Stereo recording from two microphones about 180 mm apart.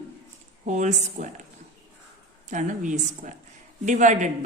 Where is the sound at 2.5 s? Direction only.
45° right (ahead or behind).